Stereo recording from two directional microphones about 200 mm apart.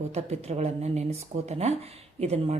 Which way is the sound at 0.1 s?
30° right (ahead or behind).